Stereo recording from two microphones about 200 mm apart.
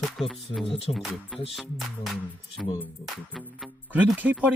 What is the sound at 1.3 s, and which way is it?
Speech, centre (ahead or behind).